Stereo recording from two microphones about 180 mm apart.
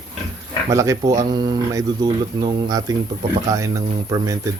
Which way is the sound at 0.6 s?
15° right (ahead or behind).